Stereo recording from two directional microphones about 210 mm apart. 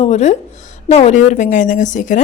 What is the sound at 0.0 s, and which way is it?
A woman's voice, 35° left (ahead or behind).